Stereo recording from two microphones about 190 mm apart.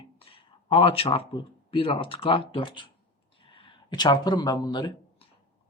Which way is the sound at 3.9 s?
20° left (ahead or behind).